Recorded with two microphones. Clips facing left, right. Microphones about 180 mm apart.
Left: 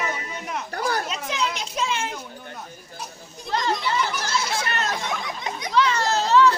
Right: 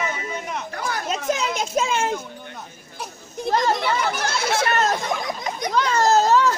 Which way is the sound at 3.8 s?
60° right (ahead or behind).